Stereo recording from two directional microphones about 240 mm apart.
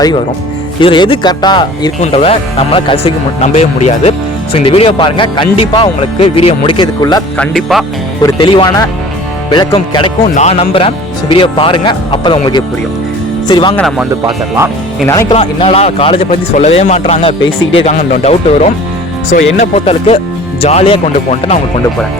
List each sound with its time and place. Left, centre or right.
0.8 s speech: centre
7.3 s speech: centre
8.2 s speech: centre
13.7 s speech: centre
14.3 s speech: centre
15.0 s speech: centre